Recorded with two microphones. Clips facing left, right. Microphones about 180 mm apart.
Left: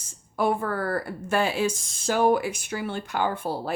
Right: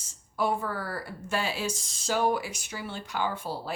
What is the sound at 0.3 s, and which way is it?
Speech, 55° left (ahead or behind).